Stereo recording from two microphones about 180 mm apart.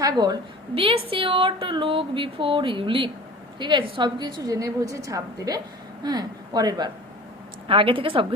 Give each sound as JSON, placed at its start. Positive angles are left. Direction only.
{"t": 0.0, "sound": "a woman's voice", "side_deg": -20}